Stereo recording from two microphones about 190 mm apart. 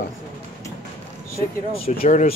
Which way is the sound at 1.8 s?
35° left (ahead or behind).